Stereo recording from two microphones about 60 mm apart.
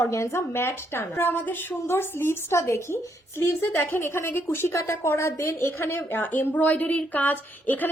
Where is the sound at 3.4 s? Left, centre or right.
Left.